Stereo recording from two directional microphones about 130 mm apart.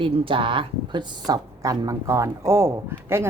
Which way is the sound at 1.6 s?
25° right (ahead or behind).